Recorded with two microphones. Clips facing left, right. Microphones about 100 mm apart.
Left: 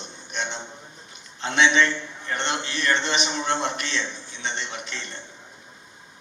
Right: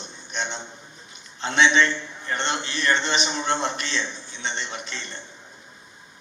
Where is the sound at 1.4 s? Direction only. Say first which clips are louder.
Right 1 dB; 30° right (ahead or behind).